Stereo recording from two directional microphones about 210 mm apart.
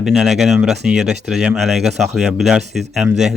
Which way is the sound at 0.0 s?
Centre (ahead or behind).